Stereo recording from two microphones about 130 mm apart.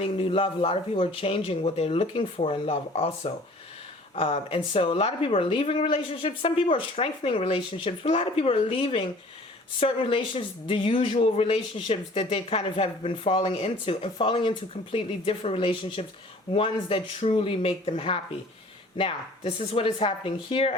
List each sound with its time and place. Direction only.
0.0 s speech: 45° left (ahead or behind)